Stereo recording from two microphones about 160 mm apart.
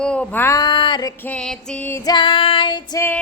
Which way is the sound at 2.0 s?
25° left (ahead or behind).